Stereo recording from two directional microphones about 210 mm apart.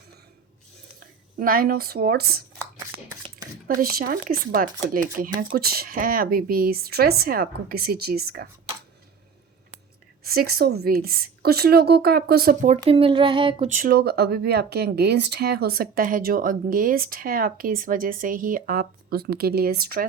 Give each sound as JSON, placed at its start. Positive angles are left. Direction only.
{"t": 0.9, "sound": "speech", "side_deg": -45}
{"t": 3.8, "sound": "speech", "side_deg": -40}
{"t": 10.2, "sound": "speech", "side_deg": -45}
{"t": 12.8, "sound": "a sound", "side_deg": -25}
{"t": 13.7, "sound": "speech", "side_deg": -40}